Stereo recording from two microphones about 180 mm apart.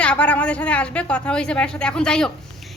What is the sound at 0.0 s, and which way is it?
A woman's voice, 5° left (ahead or behind).